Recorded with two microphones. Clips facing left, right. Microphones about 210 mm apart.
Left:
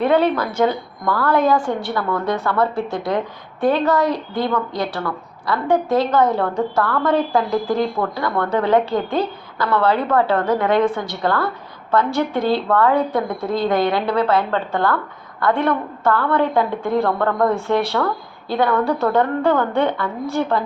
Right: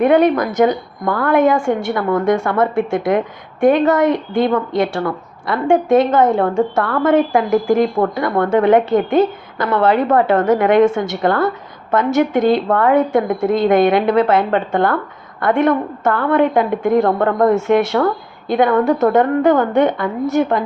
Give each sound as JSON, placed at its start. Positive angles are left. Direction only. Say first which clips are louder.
{"t": 0.0, "sound": "a woman's voice", "louder": "right 4 dB", "side_deg": -15}